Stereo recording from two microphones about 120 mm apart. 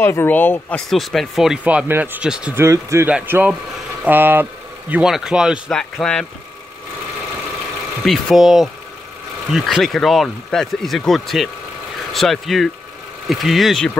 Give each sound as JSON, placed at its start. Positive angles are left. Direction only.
{"t": 0.0, "sound": "speech", "side_deg": 20}
{"t": 0.8, "sound": "speech", "side_deg": 0}
{"t": 2.5, "sound": "speech", "side_deg": -25}
{"t": 5.7, "sound": "speech", "side_deg": 5}
{"t": 8.0, "sound": "speech", "side_deg": 0}